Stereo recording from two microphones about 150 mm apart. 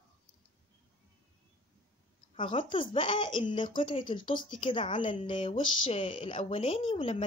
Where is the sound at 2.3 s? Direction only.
35° left (ahead or behind).